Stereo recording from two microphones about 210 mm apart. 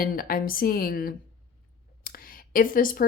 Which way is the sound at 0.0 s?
45° left (ahead or behind).